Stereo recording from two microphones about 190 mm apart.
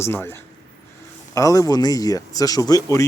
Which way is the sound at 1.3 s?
15° left (ahead or behind).